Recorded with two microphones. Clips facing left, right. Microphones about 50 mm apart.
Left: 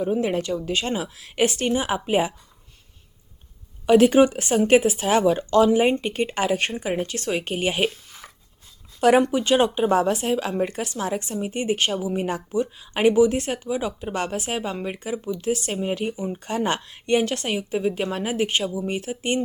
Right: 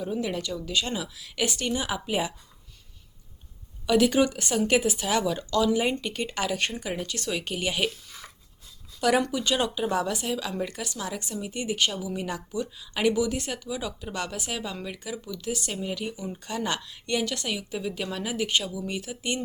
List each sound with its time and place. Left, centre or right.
0.0 s speech: left
3.8 s speech: left
9.0 s speech: left